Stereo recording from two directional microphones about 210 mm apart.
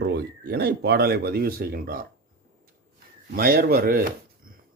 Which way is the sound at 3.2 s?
45° right (ahead or behind).